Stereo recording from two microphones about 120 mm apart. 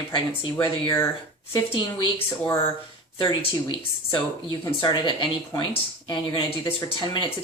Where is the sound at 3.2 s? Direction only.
40° left (ahead or behind).